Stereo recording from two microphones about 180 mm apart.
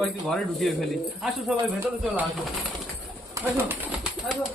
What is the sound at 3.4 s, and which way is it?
Pigeon, 5° right (ahead or behind).